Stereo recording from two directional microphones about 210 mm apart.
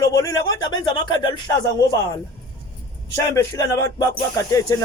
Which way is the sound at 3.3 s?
15° left (ahead or behind).